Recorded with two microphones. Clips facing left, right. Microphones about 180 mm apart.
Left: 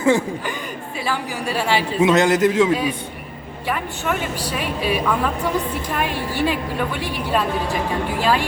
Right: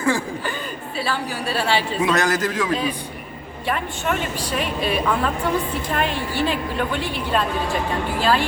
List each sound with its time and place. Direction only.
0.0 s a man's voice: 20° left (ahead or behind)
2.0 s a man's voice: 20° left (ahead or behind)
3.7 s a woman's voice: 10° left (ahead or behind)